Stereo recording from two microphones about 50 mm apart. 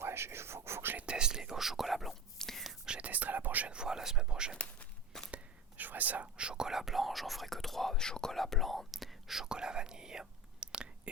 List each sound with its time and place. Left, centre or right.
0.0 s speech: right
0.9 s whispering: centre
2.4 s whispering: centre
2.8 s whispering: centre
3.1 s whispering: right
3.7 s speech: centre
4.5 s walk: left
5.3 s whispering: right
6.3 s whispering: centre